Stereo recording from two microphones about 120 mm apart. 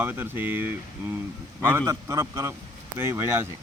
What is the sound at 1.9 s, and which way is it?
Speech, 25° right (ahead or behind).